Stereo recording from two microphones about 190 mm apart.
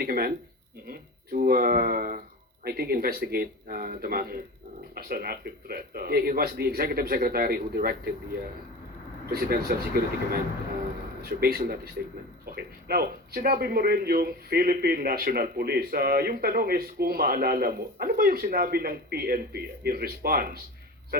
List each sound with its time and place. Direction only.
0.0 s a man's voice: 50° right (ahead or behind)
9.3 s a man's voice: 55° right (ahead or behind)
11.2 s a man's voice: 50° right (ahead or behind)